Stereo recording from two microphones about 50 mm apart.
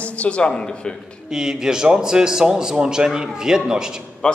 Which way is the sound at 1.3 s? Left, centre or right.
Centre.